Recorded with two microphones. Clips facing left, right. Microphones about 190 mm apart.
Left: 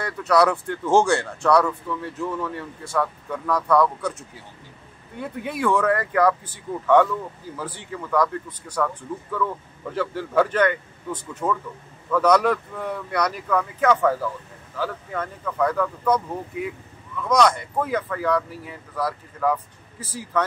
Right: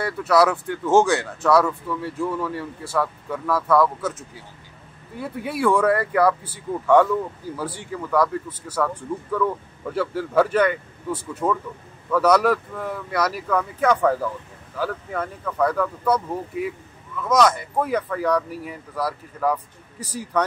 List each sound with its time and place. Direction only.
0.0 s speech: 5° right (ahead or behind)
5.2 s speech: 10° right (ahead or behind)
17.2 s speech: 5° right (ahead or behind)